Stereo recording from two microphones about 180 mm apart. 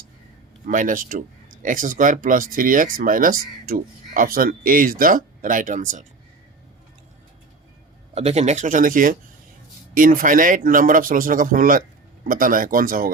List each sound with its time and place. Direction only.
0.7 s speech: 50° right (ahead or behind)
8.1 s speech: 35° right (ahead or behind); by 13.1 s 55° right (ahead or behind)